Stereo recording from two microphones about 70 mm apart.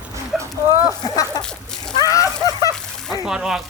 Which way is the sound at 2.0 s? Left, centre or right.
Left.